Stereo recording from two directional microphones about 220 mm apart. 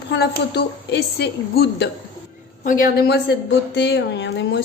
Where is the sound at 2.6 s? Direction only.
40° left (ahead or behind).